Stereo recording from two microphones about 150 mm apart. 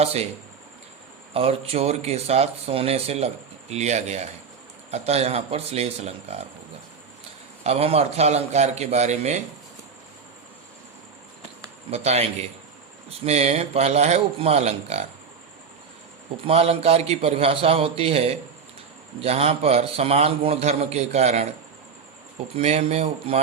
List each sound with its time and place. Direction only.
0.0 s speech: 45° right (ahead or behind)
1.3 s speech: 40° right (ahead or behind)
7.6 s speech: 40° right (ahead or behind)
11.9 s speech: 45° right (ahead or behind)
16.4 s a man's voice: 40° right (ahead or behind)
22.5 s a man's voice: 40° right (ahead or behind)